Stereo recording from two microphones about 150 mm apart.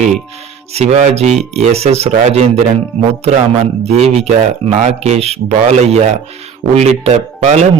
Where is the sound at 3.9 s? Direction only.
45° right (ahead or behind).